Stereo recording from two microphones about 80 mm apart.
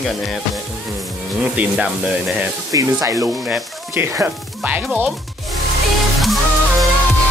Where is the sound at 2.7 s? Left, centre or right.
Right.